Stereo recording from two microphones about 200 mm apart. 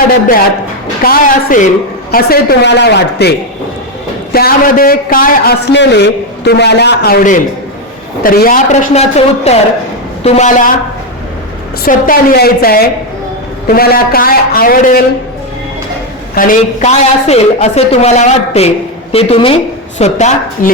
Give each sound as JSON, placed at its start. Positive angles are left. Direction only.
{"t": 1.0, "sound": "a man's voice", "side_deg": 45}
{"t": 11.9, "sound": "a man's voice", "side_deg": 45}
{"t": 16.3, "sound": "a woman's voice", "side_deg": 45}